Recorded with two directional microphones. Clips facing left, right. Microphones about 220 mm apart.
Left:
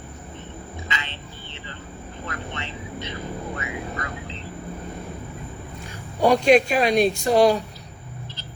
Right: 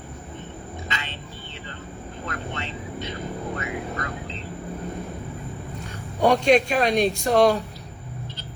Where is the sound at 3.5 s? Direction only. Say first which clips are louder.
Right 1 dB; 45° right (ahead or behind).